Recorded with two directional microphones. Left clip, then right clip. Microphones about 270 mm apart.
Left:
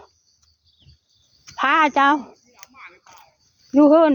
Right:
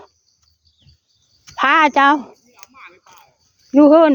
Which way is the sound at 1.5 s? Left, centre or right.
Right.